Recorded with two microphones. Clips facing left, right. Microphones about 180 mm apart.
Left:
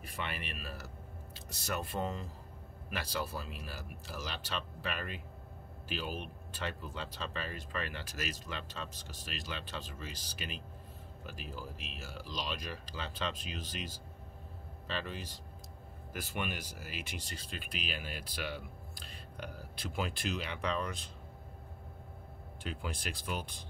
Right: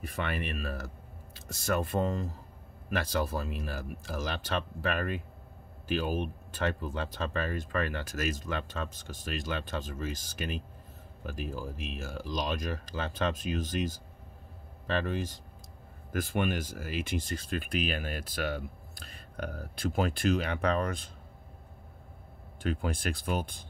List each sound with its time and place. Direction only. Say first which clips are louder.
0.1 s speech: right 7 dB; 55° right (ahead or behind)
22.6 s speech: right 9 dB; 50° right (ahead or behind)